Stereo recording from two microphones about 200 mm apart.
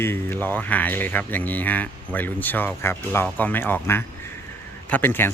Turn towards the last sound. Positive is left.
turn(degrees=10)  # may be behind; listen again after turning